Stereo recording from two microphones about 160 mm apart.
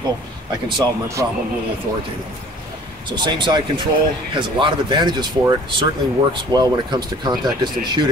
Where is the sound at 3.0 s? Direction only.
30° right (ahead or behind).